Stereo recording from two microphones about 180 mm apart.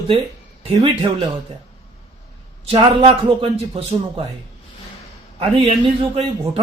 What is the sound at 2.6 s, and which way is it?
A man's voice, 30° right (ahead or behind).